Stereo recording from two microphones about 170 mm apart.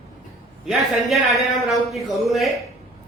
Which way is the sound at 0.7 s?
Centre (ahead or behind).